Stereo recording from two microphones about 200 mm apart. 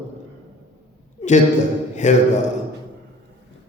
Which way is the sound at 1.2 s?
35° left (ahead or behind).